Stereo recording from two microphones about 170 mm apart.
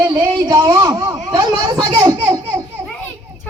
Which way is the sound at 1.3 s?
25° right (ahead or behind).